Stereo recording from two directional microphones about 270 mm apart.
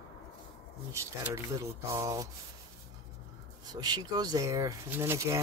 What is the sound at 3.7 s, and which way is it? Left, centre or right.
Speech, centre.